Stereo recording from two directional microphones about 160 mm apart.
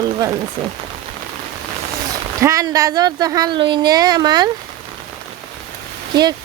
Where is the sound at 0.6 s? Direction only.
40° right (ahead or behind).